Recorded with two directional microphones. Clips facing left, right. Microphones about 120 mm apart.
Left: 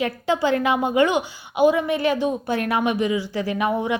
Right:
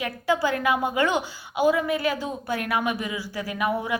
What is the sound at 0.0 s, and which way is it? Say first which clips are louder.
A woman's voice: left 3 dB; 25° left (ahead or behind).